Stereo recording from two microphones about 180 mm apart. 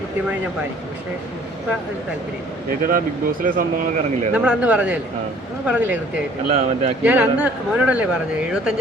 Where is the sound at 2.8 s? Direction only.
50° right (ahead or behind).